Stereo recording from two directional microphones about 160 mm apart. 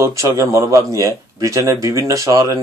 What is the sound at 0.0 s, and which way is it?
Speech, 20° right (ahead or behind).